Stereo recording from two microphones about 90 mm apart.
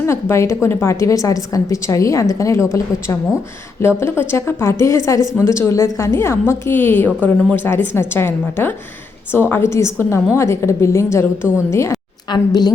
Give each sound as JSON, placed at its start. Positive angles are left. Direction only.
{"t": 0.0, "sound": "a woman's voice", "side_deg": 30}
{"t": 12.3, "sound": "a woman's voice", "side_deg": 50}